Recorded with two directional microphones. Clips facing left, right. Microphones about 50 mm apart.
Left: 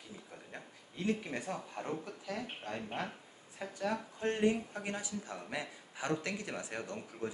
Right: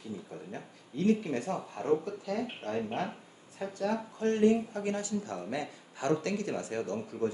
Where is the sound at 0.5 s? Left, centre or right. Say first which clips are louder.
Right 6 dB; centre.